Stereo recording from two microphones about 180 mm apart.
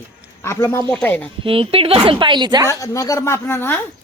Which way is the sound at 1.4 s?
30° right (ahead or behind).